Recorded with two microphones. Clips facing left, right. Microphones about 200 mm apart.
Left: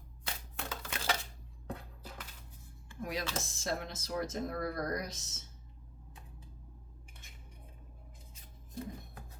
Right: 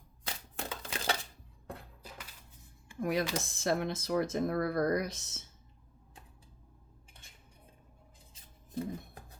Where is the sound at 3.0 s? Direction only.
55° right (ahead or behind).